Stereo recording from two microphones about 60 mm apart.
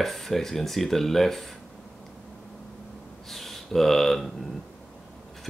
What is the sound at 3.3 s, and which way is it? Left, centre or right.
Speech, centre.